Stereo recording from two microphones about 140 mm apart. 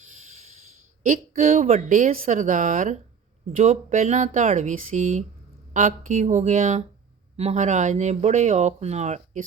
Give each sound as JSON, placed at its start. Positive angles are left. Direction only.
{"t": 1.0, "sound": "speech", "side_deg": -60}